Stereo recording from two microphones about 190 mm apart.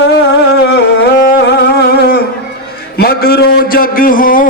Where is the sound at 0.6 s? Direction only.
65° left (ahead or behind).